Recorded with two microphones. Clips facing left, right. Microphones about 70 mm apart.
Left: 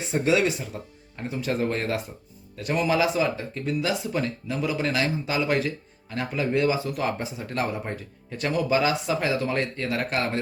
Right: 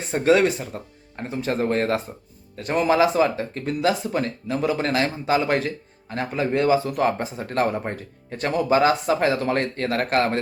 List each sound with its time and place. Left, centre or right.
0.1 s speech: right